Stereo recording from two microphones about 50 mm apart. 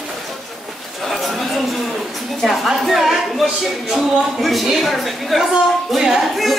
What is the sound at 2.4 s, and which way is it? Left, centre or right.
A woman's voice, centre.